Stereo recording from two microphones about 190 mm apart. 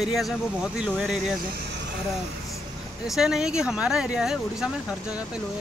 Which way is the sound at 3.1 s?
Centre (ahead or behind).